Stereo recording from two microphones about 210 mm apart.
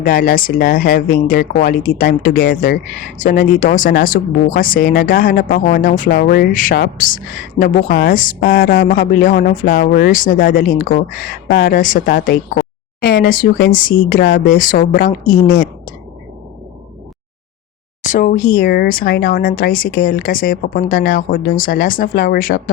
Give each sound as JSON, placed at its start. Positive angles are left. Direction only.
{"t": 0.0, "sound": "speech", "side_deg": 45}
{"t": 14.6, "sound": "a woman's voice", "side_deg": 40}
{"t": 18.0, "sound": "speech", "side_deg": 35}